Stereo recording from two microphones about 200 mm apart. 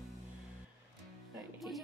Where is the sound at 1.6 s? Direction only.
Centre (ahead or behind).